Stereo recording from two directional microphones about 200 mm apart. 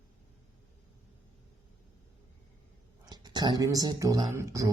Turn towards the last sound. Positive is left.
turn(degrees=-15)  # may be behind; listen again after turning